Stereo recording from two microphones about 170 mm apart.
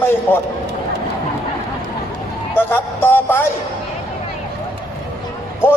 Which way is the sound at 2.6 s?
10° left (ahead or behind).